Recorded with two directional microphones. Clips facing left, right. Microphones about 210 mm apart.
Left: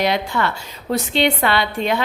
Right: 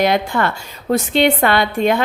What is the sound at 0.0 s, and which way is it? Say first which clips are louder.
A woman's voice: right 3 dB; 50° right (ahead or behind).